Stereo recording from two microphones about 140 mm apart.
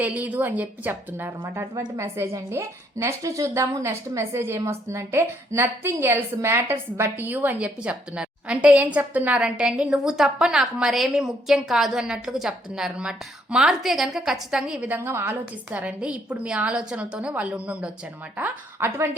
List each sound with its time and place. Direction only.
0.0 s a woman's voice: 10° right (ahead or behind)